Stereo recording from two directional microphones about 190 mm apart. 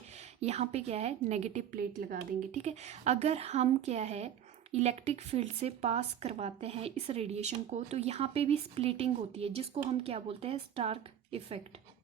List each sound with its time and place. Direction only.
0.4 s speech: 35° right (ahead or behind)